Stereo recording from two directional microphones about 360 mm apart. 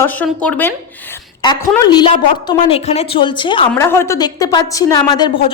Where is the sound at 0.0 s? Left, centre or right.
Centre.